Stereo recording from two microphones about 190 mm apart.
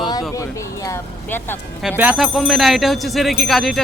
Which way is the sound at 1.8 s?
5° right (ahead or behind).